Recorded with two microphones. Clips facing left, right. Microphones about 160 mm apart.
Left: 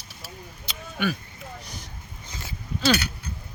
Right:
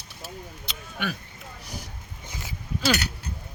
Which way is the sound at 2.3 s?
15° right (ahead or behind).